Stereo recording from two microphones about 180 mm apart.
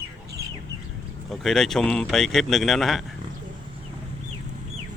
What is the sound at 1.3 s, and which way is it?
Speech, centre (ahead or behind).